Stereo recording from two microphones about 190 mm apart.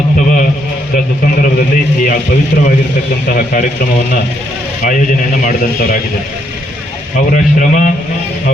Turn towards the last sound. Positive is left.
turn(degrees=45)  # may be behind; listen again after turning